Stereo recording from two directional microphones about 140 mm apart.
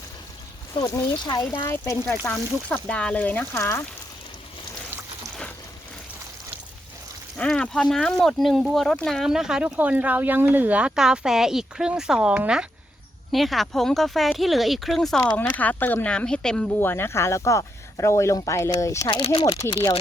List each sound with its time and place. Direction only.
0.8 s speech: 30° left (ahead or behind)
2.0 s speech: 10° left (ahead or behind)
7.3 s speech: 5° left (ahead or behind)
16.8 s speech: 15° left (ahead or behind)
19.1 s speech: 40° left (ahead or behind)
19.5 s speech: 20° left (ahead or behind)
19.7 s speech: 35° left (ahead or behind)